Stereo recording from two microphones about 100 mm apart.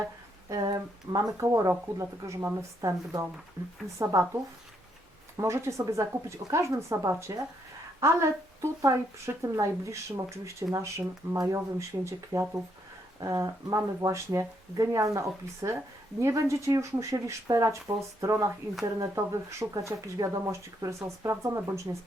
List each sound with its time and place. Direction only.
0.4 s speech: 40° right (ahead or behind)
1.4 s speech: 30° right (ahead or behind)
5.4 s speech: 30° right (ahead or behind)